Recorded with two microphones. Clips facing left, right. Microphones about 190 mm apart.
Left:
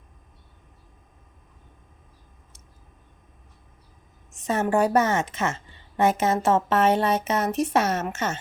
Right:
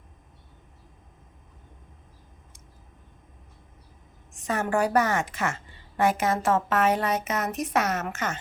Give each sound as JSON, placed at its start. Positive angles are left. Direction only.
{"t": 4.4, "sound": "a woman's voice", "side_deg": 25}